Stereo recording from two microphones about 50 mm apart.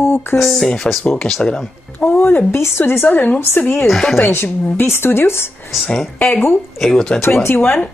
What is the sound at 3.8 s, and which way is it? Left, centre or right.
Speech, centre.